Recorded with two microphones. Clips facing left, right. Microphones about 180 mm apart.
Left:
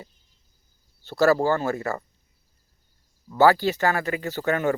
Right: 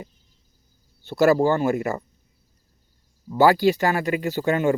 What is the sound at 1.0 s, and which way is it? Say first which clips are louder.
Speech: right 2 dB; 15° right (ahead or behind).